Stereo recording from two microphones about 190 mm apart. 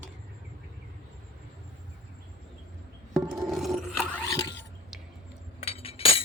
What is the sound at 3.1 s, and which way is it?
Scrape, centre (ahead or behind).